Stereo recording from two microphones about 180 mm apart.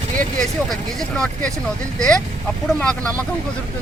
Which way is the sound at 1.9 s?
5° left (ahead or behind).